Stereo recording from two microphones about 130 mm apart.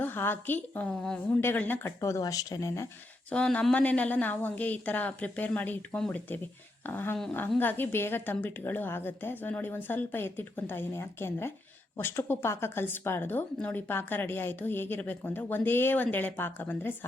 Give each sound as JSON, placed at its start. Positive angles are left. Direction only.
{"t": 0.0, "sound": "a woman's voice", "side_deg": 15}
{"t": 3.3, "sound": "a woman's voice", "side_deg": 10}